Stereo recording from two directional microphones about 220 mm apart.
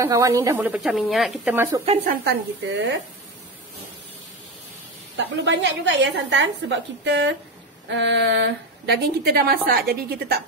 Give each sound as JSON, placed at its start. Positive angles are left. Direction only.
{"t": 0.0, "sound": "speech", "side_deg": -15}
{"t": 2.0, "sound": "a woman's voice", "side_deg": -50}
{"t": 5.1, "sound": "a woman's voice", "side_deg": -55}